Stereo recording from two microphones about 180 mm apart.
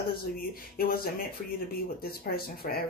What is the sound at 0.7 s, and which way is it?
Speech, 55° left (ahead or behind).